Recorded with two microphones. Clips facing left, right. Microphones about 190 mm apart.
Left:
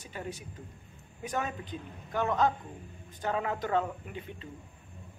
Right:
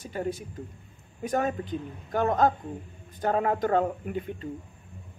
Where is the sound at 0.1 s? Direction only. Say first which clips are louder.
Right 8 dB; 50° right (ahead or behind).